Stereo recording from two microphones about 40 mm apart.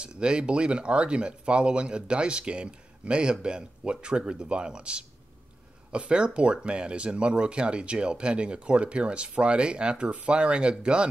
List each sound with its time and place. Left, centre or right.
0.0 s speech: right